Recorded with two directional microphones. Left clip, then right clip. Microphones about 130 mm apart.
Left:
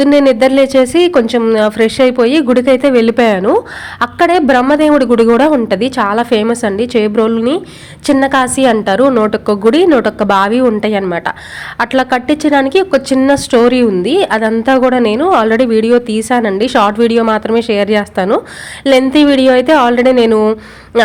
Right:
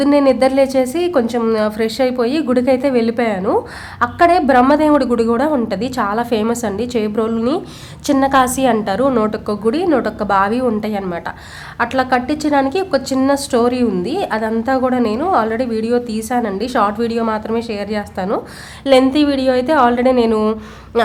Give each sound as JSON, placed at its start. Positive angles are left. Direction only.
{"t": 0.0, "sound": "a woman's voice", "side_deg": 25}